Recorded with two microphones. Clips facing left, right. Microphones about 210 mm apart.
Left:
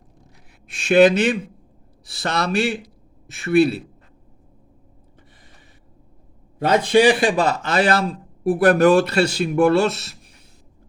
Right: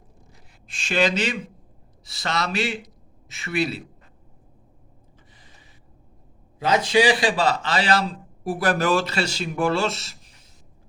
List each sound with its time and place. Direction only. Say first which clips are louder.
0.7 s a man's voice: left 9 dB; 60° left (ahead or behind)
6.6 s a man's voice: left 4 dB; 60° left (ahead or behind)